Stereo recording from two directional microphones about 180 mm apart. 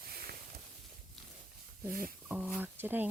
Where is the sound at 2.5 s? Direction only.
10° right (ahead or behind).